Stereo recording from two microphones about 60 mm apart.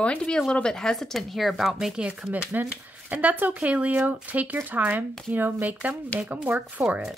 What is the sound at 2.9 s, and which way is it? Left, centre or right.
Speech, right.